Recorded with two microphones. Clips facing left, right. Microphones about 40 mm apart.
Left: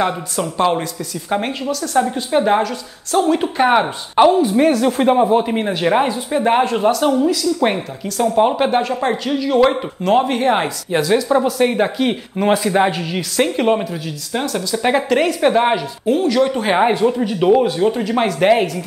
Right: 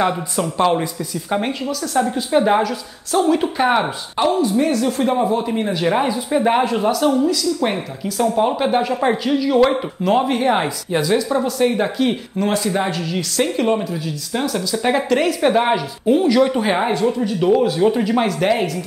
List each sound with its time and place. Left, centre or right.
0.4 s a woman's voice: centre
3.2 s speech: centre
4.4 s a woman's voice: left; by 8.8 s centre
8.8 s a woman's voice: centre
11.2 s speech: centre
13.8 s a woman's voice: centre
16.1 s speech: centre
16.6 s speech: centre
17.6 s a woman's voice: centre
18.1 s speech: centre